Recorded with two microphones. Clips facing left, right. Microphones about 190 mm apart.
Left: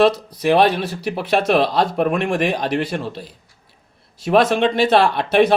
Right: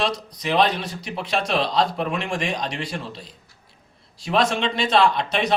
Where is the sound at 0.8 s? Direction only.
60° left (ahead or behind).